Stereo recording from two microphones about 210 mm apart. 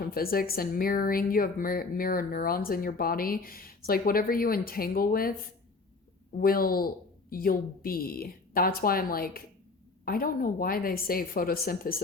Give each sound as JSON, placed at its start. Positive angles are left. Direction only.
{"t": 0.0, "sound": "speech", "side_deg": 45}
{"t": 6.3, "sound": "speech", "side_deg": 45}